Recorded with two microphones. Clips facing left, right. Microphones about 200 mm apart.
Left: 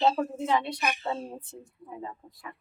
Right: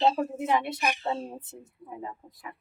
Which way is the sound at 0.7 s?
25° right (ahead or behind).